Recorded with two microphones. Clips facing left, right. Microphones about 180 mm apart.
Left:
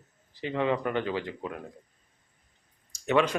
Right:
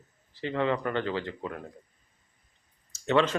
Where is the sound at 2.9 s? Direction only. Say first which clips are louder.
Even; 15° left (ahead or behind).